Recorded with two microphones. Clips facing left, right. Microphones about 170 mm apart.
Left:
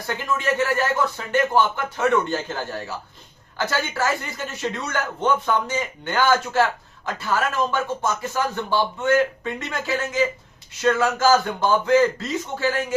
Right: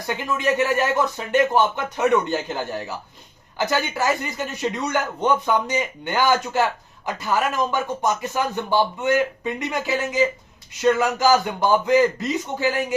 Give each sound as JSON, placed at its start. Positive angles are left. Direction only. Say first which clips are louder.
{"t": 0.1, "sound": "speech", "louder": "right 1 dB", "side_deg": -15}